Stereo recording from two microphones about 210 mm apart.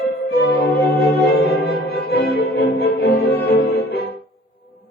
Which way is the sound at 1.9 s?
50° left (ahead or behind).